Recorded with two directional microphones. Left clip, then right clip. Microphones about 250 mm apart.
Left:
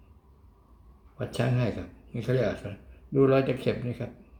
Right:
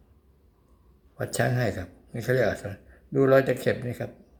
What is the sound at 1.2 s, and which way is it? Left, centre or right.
Speech, centre.